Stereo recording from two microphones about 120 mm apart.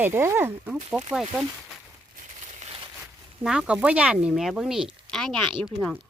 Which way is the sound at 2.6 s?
55° right (ahead or behind).